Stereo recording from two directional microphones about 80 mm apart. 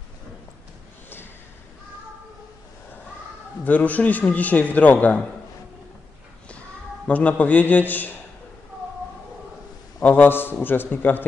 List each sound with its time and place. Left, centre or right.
3.6 s a man's voice: centre
7.1 s a man's voice: centre
10.0 s a man's voice: left